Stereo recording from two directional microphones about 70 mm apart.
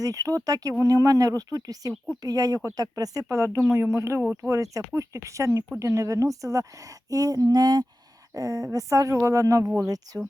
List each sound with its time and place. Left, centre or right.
0.0 s speech: right
8.3 s speech: right